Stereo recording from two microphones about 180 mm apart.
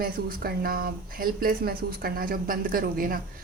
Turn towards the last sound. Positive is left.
turn(degrees=-55)  # may be behind; listen again after turning